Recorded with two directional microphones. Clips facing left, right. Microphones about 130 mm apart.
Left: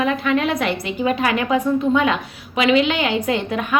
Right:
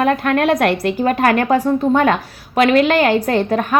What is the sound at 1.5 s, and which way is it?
Speech, 35° right (ahead or behind).